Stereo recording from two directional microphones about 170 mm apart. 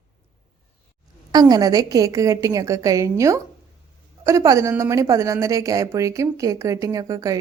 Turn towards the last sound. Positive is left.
turn(degrees=-20)  # may be behind; listen again after turning